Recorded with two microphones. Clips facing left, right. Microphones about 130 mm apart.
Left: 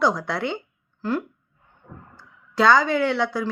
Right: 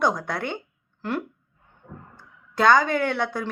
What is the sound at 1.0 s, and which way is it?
Speech, 65° right (ahead or behind).